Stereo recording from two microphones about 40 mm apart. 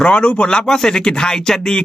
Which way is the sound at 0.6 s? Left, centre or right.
Centre.